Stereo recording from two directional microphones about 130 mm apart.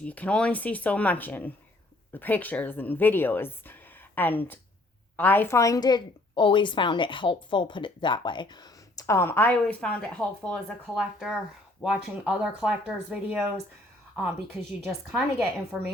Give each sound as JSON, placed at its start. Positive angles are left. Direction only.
{"t": 0.0, "sound": "a woman's voice", "side_deg": 10}
{"t": 10.9, "sound": "speech", "side_deg": -5}
{"t": 15.1, "sound": "speech", "side_deg": 0}